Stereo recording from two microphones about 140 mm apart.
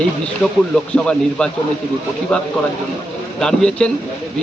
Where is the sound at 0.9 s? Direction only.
5° left (ahead or behind).